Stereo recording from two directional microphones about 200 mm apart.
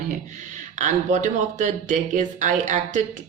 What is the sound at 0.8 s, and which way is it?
Speech, 35° right (ahead or behind).